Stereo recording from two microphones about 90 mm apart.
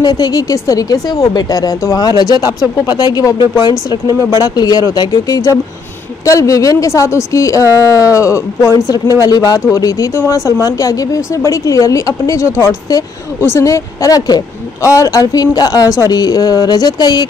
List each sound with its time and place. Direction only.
0.0 s speech: 50° left (ahead or behind)
4.4 s speech: 45° left (ahead or behind)